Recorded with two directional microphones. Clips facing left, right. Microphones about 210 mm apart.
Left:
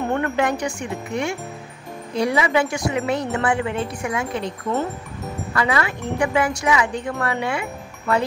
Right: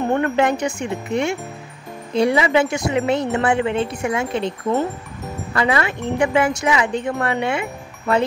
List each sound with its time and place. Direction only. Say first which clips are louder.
0.1 s speech: right 4 dB; 25° right (ahead or behind)